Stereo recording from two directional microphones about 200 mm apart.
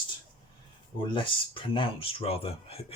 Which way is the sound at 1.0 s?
25° left (ahead or behind).